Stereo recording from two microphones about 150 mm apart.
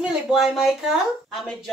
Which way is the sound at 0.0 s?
5° right (ahead or behind).